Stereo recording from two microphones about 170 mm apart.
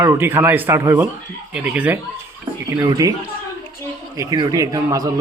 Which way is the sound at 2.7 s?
20° right (ahead or behind).